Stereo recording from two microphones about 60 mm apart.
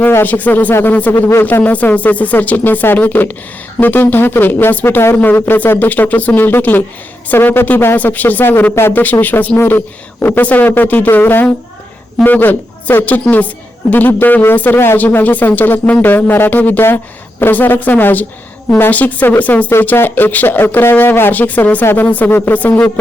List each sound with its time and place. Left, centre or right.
0.2 s speech: left
0.7 s speech: left
1.6 s speech: left
8.9 s speech: left